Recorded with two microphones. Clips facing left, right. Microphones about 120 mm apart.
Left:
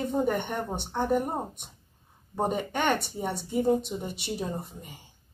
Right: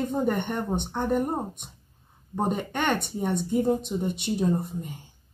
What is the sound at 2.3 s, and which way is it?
A woman's voice, 10° left (ahead or behind).